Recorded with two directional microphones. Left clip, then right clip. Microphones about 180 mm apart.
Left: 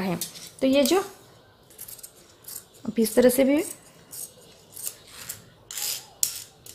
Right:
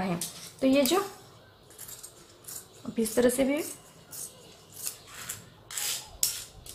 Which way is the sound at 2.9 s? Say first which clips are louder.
Left 6 dB; 40° left (ahead or behind).